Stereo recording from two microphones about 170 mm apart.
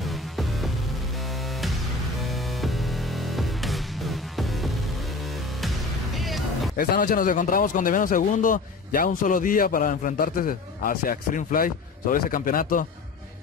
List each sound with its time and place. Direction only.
0.0 s music: centre (ahead or behind)
6.1 s music: centre (ahead or behind)
6.8 s speech: 55° left (ahead or behind)